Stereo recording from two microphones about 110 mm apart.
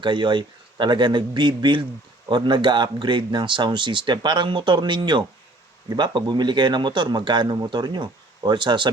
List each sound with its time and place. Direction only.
0.0 s speech: 45° right (ahead or behind)